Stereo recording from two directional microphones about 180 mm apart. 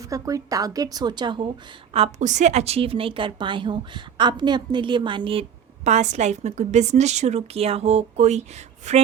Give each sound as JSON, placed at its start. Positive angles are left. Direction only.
{"t": 0.1, "sound": "a woman's voice", "side_deg": -20}
{"t": 1.9, "sound": "a woman's voice", "side_deg": -35}